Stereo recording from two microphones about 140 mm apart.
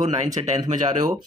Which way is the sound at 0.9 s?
30° right (ahead or behind).